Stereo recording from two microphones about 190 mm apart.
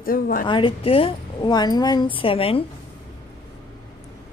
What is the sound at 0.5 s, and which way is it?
A woman's voice, 25° left (ahead or behind).